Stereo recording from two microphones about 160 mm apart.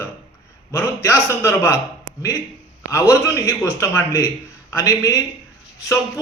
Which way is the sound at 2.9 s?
15° left (ahead or behind).